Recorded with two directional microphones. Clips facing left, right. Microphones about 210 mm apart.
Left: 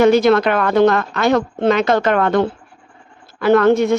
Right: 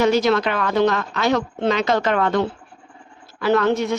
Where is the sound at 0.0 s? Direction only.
55° left (ahead or behind).